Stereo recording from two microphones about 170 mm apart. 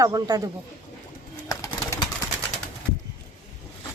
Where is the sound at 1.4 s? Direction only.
20° left (ahead or behind).